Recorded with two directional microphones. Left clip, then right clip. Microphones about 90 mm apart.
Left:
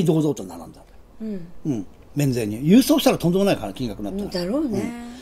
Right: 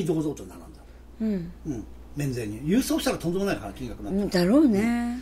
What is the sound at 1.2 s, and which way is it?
Speech, 20° right (ahead or behind).